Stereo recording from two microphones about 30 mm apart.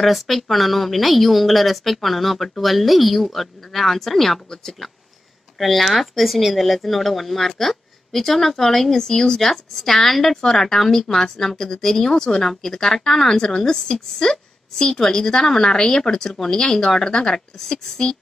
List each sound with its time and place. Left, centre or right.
0.0 s speech: centre
5.6 s speech: centre